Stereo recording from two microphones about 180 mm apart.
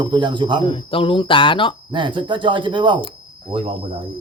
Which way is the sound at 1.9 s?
25° right (ahead or behind).